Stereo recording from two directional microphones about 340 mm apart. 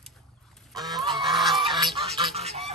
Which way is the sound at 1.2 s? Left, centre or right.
Centre.